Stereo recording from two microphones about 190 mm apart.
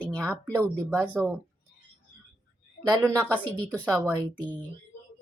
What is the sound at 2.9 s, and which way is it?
Speech, 5° left (ahead or behind).